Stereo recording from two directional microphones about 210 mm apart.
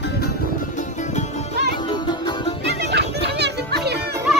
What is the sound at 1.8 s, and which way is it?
Music, 20° left (ahead or behind).